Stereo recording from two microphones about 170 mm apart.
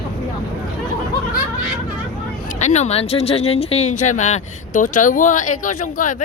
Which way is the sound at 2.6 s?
40° left (ahead or behind).